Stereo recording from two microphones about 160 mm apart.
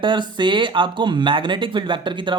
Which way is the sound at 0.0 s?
30° right (ahead or behind).